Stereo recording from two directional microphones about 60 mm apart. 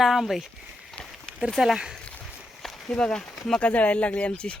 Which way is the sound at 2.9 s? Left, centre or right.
Centre.